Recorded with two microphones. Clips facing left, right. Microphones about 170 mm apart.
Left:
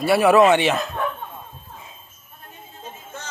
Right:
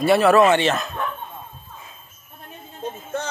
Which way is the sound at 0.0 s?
10° left (ahead or behind).